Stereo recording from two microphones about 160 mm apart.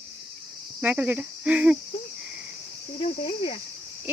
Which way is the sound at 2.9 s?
35° left (ahead or behind).